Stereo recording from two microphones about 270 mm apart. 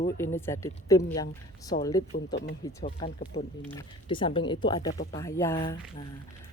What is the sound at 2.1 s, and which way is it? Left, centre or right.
Speech, left.